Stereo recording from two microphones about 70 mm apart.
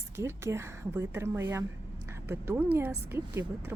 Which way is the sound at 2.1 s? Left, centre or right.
Right.